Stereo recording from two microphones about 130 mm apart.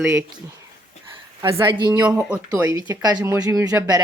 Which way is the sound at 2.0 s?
10° right (ahead or behind).